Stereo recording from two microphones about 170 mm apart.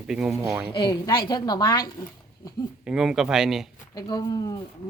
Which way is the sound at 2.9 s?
5° right (ahead or behind).